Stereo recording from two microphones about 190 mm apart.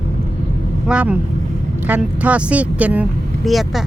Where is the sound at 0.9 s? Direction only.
5° right (ahead or behind).